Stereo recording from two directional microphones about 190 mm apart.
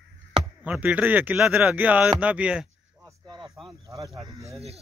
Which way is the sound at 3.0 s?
20° right (ahead or behind).